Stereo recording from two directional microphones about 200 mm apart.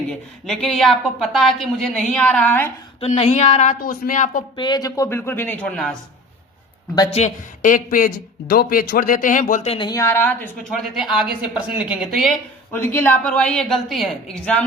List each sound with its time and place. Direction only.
0.1 s a woman's voice: centre (ahead or behind)
3.0 s speech: 35° left (ahead or behind)
4.5 s a woman's voice: 20° left (ahead or behind); by 6.0 s 5° left (ahead or behind)
6.9 s speech: 20° left (ahead or behind)
7.2 s speech: 40° left (ahead or behind)
9.7 s a woman's voice: 20° left (ahead or behind); by 12.3 s centre (ahead or behind)
12.7 s a woman's voice: 10° left (ahead or behind)